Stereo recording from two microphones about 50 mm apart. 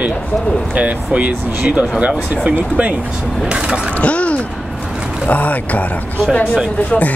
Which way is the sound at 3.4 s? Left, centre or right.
Centre.